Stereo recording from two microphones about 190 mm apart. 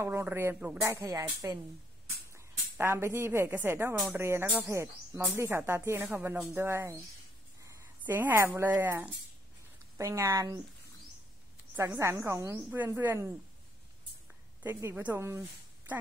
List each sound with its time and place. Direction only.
0.0 s speech: 15° right (ahead or behind)
11.7 s speech: 15° right (ahead or behind)
14.6 s speech: 15° right (ahead or behind)